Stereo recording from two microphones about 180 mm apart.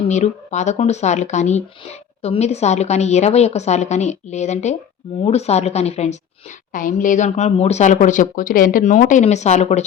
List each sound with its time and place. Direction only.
0.1 s speech: 40° left (ahead or behind)
6.7 s speech: 45° left (ahead or behind)